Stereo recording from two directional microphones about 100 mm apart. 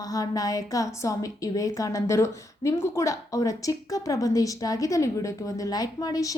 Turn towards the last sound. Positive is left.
turn(degrees=35)  # may be behind; listen again after turning